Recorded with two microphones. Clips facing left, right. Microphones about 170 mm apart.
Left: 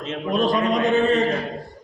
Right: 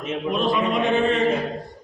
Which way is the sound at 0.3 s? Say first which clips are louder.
Left 2 dB; 40° left (ahead or behind).